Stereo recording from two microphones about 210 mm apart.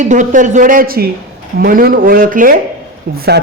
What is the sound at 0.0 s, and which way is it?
Speech, 35° right (ahead or behind).